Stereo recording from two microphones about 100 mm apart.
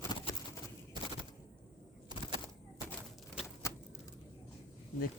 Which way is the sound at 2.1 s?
50° right (ahead or behind).